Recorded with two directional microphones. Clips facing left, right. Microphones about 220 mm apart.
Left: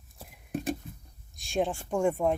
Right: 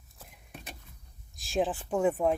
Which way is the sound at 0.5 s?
45° left (ahead or behind).